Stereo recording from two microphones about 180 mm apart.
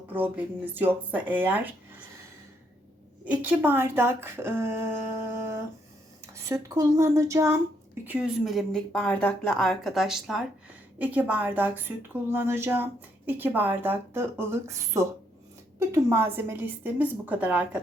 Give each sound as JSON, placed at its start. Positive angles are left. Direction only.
{"t": 0.1, "sound": "speech", "side_deg": -10}
{"t": 3.2, "sound": "speech", "side_deg": -10}
{"t": 6.3, "sound": "speech", "side_deg": -15}
{"t": 8.0, "sound": "speech", "side_deg": -5}